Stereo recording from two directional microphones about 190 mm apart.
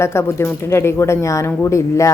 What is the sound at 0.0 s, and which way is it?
Speech, 15° left (ahead or behind).